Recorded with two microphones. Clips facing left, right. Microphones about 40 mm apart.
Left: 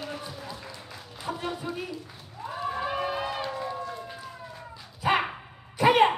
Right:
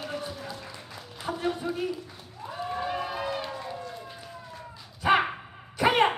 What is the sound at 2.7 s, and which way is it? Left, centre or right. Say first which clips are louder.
Run: left 1 dB; centre.